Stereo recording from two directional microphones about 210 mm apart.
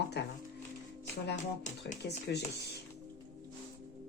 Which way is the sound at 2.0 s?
55° left (ahead or behind).